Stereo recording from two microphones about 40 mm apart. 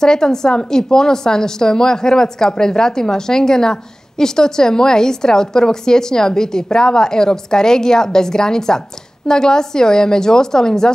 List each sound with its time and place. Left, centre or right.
0.0 s a woman's voice: centre